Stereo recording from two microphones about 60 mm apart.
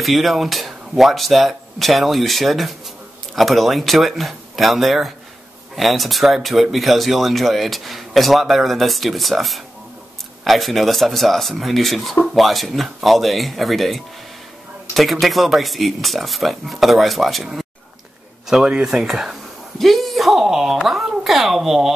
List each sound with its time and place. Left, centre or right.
0.0 s speech: centre